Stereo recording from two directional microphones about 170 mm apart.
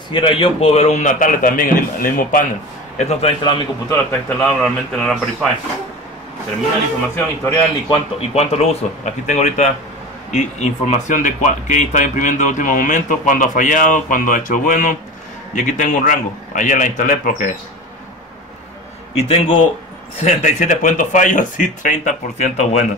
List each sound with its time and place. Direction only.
0.1 s speech: 30° left (ahead or behind); by 2.4 s 55° left (ahead or behind)
3.0 s speech: 35° left (ahead or behind)
4.4 s a man's voice: 5° left (ahead or behind)
7.2 s a man's voice: 10° left (ahead or behind)
7.9 s speech: 35° left (ahead or behind); by 17.5 s 50° left (ahead or behind)
19.1 s speech: 35° left (ahead or behind)
20.2 s speech: 50° left (ahead or behind)